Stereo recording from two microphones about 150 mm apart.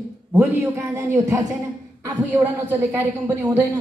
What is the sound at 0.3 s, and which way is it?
A woman's voice, 15° right (ahead or behind).